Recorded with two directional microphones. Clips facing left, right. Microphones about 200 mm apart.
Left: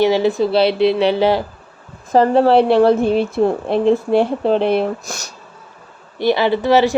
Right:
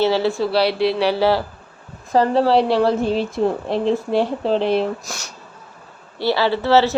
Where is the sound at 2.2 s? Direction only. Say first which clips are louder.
Left 4 dB; 55° left (ahead or behind).